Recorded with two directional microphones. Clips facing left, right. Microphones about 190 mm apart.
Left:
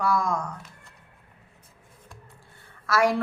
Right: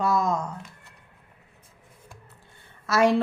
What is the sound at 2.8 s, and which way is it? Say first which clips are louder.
Speech: right 2 dB; 20° right (ahead or behind).